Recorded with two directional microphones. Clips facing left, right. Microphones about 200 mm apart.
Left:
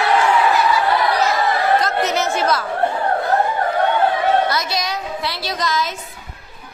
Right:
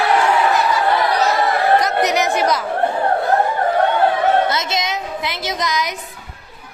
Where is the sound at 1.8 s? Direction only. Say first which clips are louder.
Right 2 dB; 15° right (ahead or behind).